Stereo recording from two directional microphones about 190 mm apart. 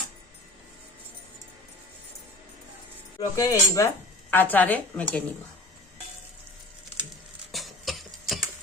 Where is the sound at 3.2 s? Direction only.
20° left (ahead or behind).